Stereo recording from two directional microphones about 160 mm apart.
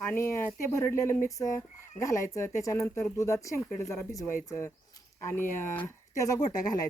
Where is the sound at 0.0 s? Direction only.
15° left (ahead or behind).